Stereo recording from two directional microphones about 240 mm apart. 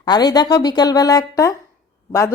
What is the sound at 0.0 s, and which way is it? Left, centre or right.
Speech, centre.